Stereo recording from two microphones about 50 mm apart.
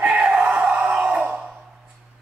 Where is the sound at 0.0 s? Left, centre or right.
Right.